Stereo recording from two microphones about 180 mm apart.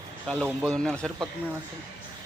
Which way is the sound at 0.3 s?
5° right (ahead or behind).